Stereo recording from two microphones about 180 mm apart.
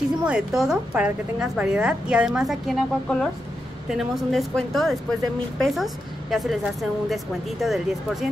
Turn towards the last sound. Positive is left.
turn(degrees=0)  # may be behind; listen again after turning